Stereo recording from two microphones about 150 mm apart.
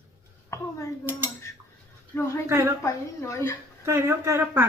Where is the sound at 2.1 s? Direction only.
20° left (ahead or behind).